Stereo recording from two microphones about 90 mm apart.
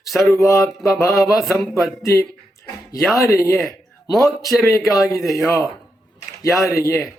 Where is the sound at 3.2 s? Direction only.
35° left (ahead or behind).